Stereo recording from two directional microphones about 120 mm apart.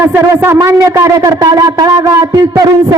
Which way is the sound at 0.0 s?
15° right (ahead or behind).